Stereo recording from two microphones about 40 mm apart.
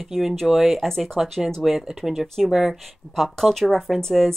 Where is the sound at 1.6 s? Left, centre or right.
Centre.